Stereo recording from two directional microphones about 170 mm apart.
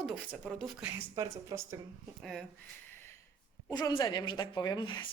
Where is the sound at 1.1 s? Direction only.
20° right (ahead or behind).